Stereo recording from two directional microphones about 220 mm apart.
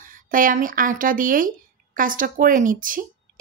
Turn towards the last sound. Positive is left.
turn(degrees=-40)  # may be behind; listen again after turning